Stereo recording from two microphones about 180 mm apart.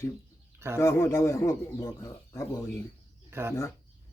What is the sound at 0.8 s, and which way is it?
A man's voice, 15° left (ahead or behind).